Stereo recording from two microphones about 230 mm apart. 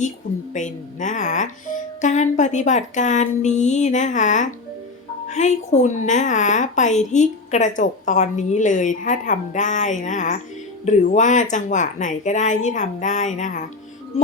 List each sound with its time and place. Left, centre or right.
0.5 s a woman's voice: left